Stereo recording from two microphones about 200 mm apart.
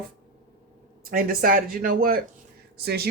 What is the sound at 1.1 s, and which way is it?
Speech, 45° right (ahead or behind).